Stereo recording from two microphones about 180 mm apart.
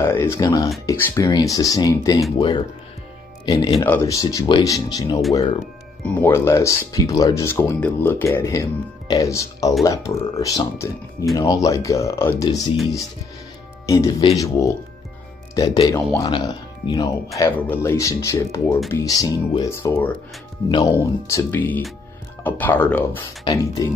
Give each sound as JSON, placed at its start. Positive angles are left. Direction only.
{"t": 0.0, "sound": "speech", "side_deg": 15}
{"t": 13.8, "sound": "speech", "side_deg": 20}
{"t": 16.3, "sound": "speech", "side_deg": 25}
{"t": 23.4, "sound": "speech", "side_deg": 20}